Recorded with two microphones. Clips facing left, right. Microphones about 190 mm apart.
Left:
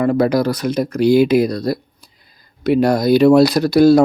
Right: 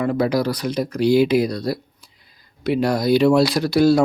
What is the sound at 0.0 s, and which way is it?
Speech, 50° left (ahead or behind).